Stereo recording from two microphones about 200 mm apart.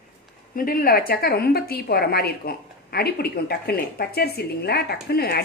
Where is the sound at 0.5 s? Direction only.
45° left (ahead or behind).